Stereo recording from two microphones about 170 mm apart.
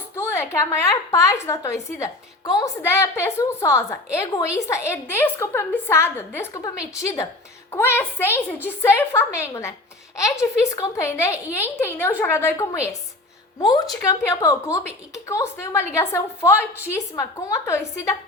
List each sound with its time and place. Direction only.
0.2 s a woman's voice: 15° left (ahead or behind)